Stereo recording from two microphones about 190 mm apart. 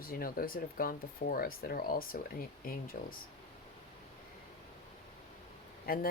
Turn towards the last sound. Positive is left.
turn(degrees=50)  # may be behind; listen again after turning